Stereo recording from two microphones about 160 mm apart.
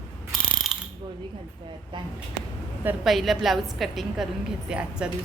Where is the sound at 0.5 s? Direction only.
Centre (ahead or behind).